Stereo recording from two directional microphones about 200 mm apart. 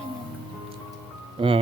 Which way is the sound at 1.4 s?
25° right (ahead or behind).